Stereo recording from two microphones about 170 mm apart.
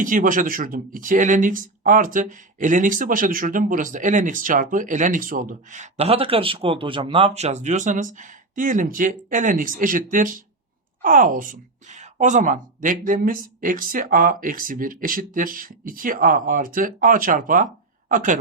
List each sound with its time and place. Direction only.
0.0 s speech: 50° right (ahead or behind)